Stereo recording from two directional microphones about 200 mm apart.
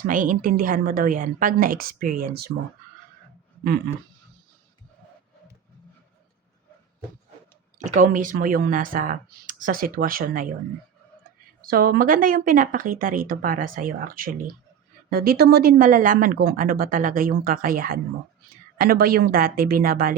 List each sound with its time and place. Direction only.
0.0 s speech: 40° right (ahead or behind)
3.6 s a sound: 50° right (ahead or behind)
7.8 s speech: 40° right (ahead or behind)
11.6 s speech: 45° right (ahead or behind)